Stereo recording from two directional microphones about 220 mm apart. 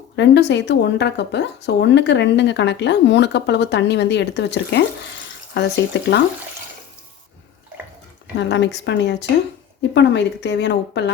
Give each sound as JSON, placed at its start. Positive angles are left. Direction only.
{"t": 0.2, "sound": "speech", "side_deg": 50}
{"t": 8.4, "sound": "speech", "side_deg": 55}